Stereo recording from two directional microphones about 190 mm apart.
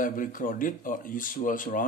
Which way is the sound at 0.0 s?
45° left (ahead or behind).